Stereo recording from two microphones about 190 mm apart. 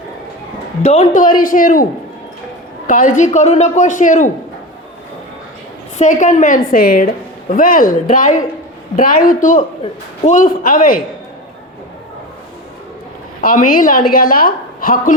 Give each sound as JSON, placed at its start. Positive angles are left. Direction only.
{"t": 0.8, "sound": "a woman's voice", "side_deg": 40}
{"t": 6.0, "sound": "a woman's voice", "side_deg": 40}
{"t": 13.4, "sound": "a woman's voice", "side_deg": 45}